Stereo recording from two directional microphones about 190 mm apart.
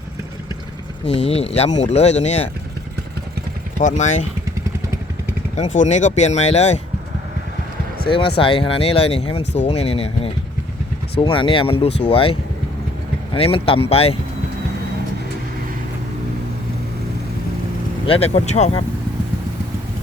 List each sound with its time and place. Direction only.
1.0 s speech: 30° left (ahead or behind)
3.8 s speech: 40° left (ahead or behind)
5.5 s speech: 40° left (ahead or behind)
8.0 s speech: 25° left (ahead or behind)
18.0 s speech: 30° left (ahead or behind)